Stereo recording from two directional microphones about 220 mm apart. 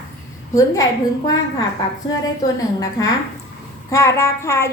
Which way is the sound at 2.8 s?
15° left (ahead or behind).